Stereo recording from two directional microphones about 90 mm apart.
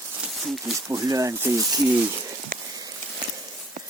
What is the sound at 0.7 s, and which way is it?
Speech, 35° right (ahead or behind).